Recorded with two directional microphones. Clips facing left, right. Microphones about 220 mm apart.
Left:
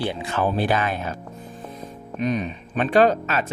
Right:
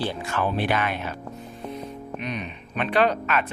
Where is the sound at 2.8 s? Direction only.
40° left (ahead or behind).